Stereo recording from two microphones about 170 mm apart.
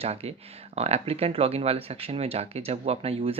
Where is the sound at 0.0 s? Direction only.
35° right (ahead or behind).